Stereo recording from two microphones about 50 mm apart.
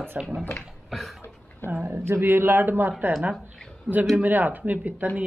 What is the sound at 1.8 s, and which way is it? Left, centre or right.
Speech, right.